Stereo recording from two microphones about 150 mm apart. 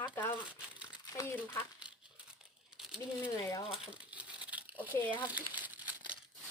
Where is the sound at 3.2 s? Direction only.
35° left (ahead or behind).